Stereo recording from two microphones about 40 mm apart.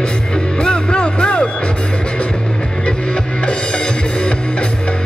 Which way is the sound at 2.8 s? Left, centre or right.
Left.